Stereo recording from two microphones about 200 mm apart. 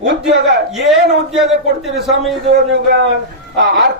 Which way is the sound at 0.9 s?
Centre (ahead or behind).